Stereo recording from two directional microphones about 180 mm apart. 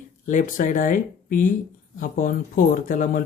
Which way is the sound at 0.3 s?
50° left (ahead or behind).